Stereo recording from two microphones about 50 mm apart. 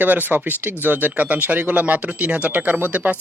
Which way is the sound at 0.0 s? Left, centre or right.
Right.